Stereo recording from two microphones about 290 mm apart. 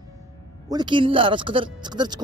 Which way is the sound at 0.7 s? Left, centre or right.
Centre.